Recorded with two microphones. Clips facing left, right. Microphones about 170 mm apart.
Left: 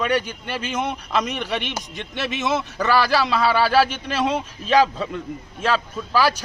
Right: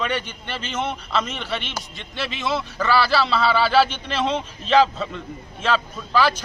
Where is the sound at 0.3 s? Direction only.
10° left (ahead or behind).